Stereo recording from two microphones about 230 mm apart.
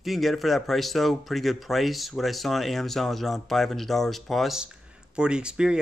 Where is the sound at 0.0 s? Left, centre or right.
Centre.